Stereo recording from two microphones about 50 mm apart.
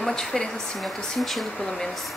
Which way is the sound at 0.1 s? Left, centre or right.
Centre.